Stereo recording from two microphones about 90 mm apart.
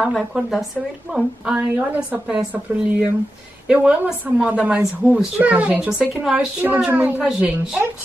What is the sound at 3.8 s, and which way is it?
A child's voice, 15° right (ahead or behind).